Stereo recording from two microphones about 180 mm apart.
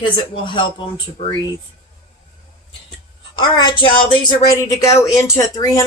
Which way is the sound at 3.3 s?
25° left (ahead or behind).